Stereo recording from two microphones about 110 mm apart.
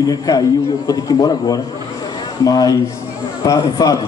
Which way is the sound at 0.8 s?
35° left (ahead or behind).